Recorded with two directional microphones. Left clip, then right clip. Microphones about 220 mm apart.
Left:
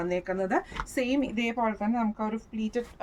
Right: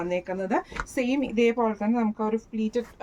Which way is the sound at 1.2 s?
15° left (ahead or behind).